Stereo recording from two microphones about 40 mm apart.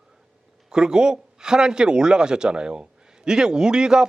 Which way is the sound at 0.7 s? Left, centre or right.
Centre.